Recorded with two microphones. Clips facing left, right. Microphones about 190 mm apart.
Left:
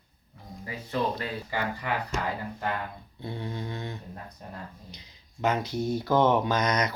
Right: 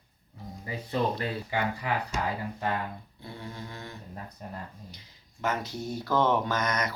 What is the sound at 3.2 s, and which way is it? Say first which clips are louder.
Speech: left 7 dB; 25° left (ahead or behind).